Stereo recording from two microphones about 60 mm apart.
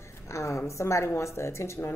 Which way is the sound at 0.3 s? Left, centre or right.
Left.